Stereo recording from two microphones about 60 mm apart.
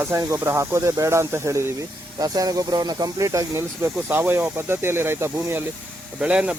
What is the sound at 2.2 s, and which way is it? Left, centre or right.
Speech, right.